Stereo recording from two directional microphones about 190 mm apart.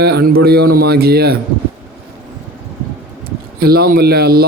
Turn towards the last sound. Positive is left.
turn(degrees=-55)  # may be behind; listen again after turning